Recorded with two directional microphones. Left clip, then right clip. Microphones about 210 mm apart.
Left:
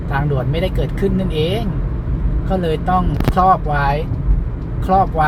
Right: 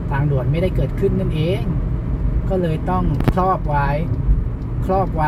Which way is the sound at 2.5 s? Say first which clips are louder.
Left 4 dB; 40° left (ahead or behind).